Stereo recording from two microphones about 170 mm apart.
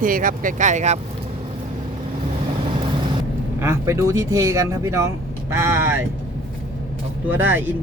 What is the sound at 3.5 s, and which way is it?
Speech, 15° right (ahead or behind).